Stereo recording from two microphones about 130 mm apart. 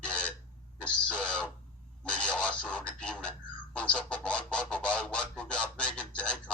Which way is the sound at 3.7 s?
10° left (ahead or behind).